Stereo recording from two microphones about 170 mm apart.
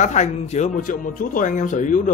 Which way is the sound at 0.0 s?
45° left (ahead or behind).